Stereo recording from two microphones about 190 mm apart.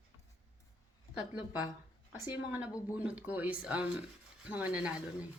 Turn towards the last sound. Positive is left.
turn(degrees=-5)  # may be behind; listen again after turning